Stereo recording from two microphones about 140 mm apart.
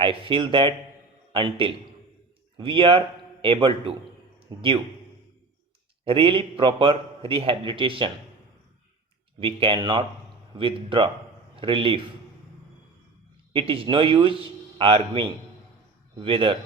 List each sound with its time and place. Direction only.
0.0 s a man's voice: 40° right (ahead or behind)
6.1 s a man's voice: 40° right (ahead or behind)
9.4 s a man's voice: 35° right (ahead or behind)
13.5 s a man's voice: 40° right (ahead or behind)